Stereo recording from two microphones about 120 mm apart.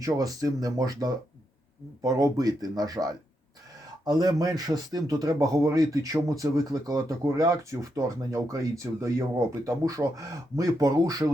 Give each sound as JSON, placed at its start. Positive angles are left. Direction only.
{"t": 0.0, "sound": "a man's voice", "side_deg": -30}